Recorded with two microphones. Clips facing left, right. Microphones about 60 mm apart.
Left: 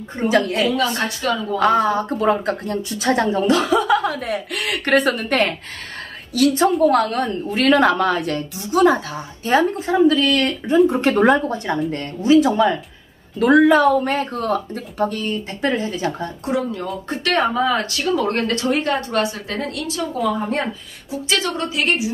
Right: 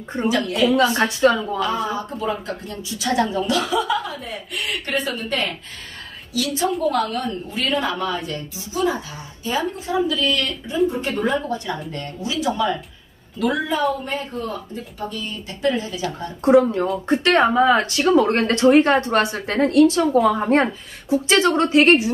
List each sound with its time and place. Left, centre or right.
0.3 s speech: left
0.7 s speech: right
1.6 s a woman's voice: left
10.9 s speech: left
11.4 s speech: left
13.4 s speech: left
16.4 s a woman's voice: right